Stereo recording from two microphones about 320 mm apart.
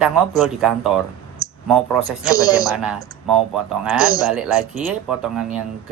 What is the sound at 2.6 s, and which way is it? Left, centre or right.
Speech, centre.